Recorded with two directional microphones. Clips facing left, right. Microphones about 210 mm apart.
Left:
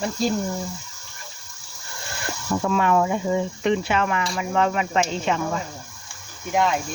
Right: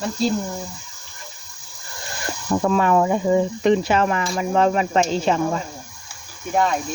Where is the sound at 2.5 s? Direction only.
35° right (ahead or behind).